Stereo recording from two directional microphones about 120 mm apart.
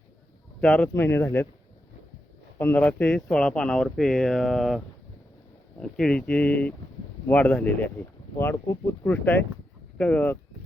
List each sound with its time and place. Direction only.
0.6 s speech: 5° left (ahead or behind)
0.9 s speech: 20° left (ahead or behind)
2.6 s speech: 15° left (ahead or behind)